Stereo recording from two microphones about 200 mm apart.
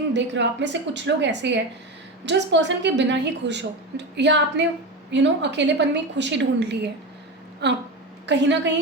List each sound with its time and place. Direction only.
0.1 s a woman's voice: 60° right (ahead or behind)